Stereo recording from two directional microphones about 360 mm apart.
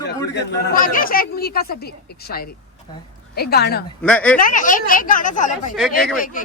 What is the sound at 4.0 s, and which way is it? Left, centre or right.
Speech, centre.